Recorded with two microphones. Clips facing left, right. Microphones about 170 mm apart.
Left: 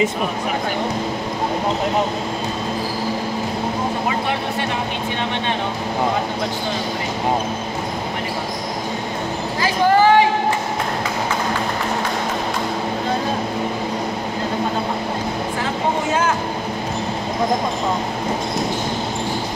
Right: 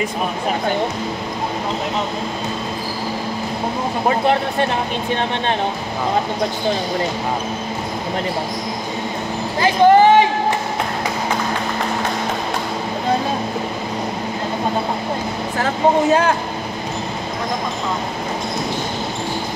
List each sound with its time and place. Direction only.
9.6 s speech: 20° right (ahead or behind)